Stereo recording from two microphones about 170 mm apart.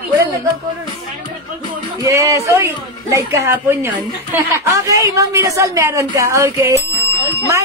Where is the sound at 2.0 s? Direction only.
20° right (ahead or behind).